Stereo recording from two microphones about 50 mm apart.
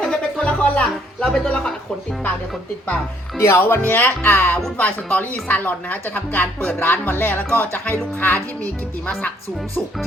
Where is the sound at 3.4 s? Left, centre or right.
Left.